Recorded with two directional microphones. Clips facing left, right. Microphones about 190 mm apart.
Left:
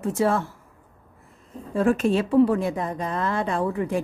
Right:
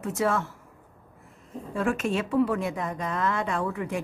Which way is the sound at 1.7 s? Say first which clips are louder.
Left 6 dB; 35° left (ahead or behind).